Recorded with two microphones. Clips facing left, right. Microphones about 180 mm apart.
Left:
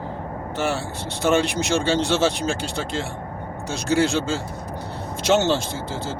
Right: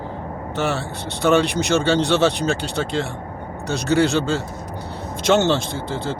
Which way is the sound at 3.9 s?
Centre (ahead or behind).